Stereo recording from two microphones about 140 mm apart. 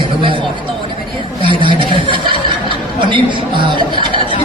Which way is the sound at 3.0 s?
35° right (ahead or behind).